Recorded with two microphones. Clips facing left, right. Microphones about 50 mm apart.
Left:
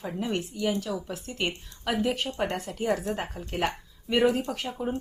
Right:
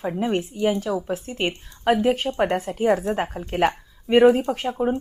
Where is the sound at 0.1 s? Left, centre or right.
Right.